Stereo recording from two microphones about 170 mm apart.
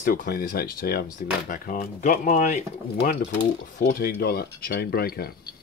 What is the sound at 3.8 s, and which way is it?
Speech, 65° left (ahead or behind).